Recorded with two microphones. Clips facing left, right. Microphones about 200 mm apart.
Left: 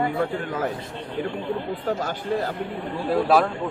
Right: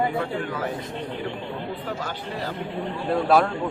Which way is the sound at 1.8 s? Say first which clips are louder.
Left 6 dB; 45° left (ahead or behind).